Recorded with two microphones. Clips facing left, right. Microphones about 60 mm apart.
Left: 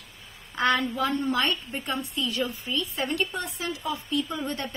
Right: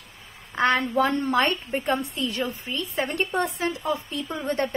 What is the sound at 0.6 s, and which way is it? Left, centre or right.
A woman's voice, right.